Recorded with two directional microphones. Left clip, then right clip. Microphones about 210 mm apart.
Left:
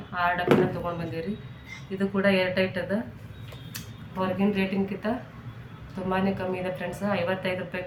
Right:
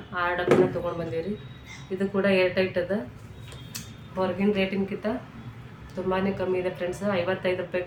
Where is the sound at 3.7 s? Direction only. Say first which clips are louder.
Right 2 dB; centre (ahead or behind).